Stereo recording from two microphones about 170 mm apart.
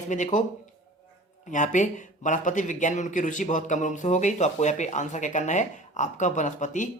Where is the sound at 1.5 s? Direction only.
45° left (ahead or behind).